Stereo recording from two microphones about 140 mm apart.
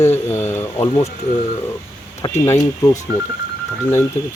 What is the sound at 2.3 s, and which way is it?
Speech, 20° left (ahead or behind).